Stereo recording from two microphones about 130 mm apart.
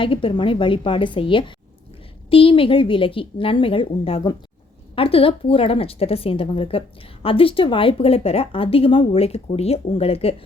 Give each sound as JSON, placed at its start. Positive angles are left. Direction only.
{"t": 0.0, "sound": "a woman's voice", "side_deg": 45}